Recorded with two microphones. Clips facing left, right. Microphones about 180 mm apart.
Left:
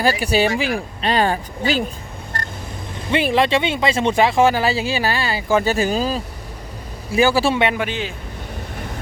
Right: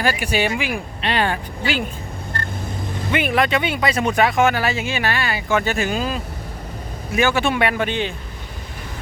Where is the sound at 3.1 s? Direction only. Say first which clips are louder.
Left 2 dB; 30° left (ahead or behind).